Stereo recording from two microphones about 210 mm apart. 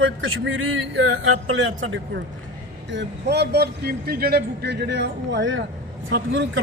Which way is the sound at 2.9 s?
55° right (ahead or behind).